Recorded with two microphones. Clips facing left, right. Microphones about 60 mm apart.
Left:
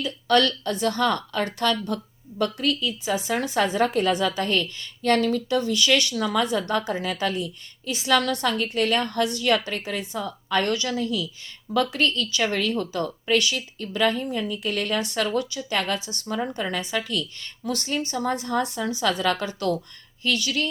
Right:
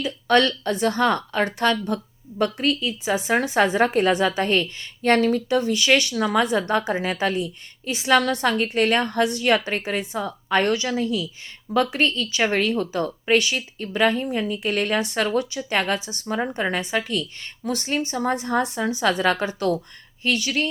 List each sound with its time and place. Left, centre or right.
0.0 s a woman's voice: right